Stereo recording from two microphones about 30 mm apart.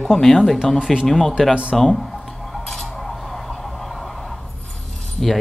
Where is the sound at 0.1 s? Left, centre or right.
Centre.